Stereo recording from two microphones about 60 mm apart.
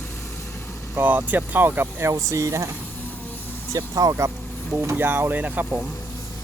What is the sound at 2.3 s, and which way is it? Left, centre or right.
Speech, right.